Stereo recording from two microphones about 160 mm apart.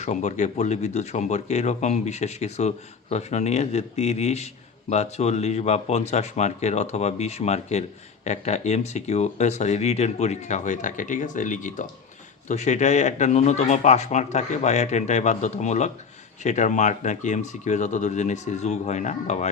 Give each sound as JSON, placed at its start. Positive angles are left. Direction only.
{"t": 0.0, "sound": "speech", "side_deg": 45}